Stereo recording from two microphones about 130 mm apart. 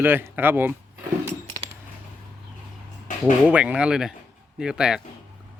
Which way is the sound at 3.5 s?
10° right (ahead or behind).